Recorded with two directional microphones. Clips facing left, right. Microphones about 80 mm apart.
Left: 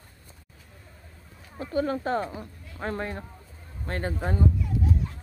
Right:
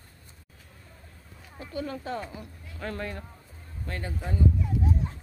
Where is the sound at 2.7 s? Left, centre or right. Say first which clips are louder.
Left 3 dB; left.